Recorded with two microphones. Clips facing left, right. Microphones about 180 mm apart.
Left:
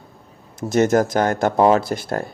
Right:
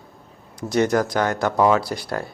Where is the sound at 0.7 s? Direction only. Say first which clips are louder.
Left 3 dB; 45° left (ahead or behind).